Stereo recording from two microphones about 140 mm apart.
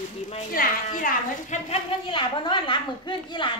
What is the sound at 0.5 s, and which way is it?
A woman's voice, 75° left (ahead or behind).